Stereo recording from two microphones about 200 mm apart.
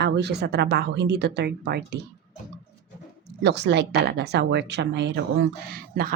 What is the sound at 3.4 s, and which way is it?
Speech, 60° right (ahead or behind).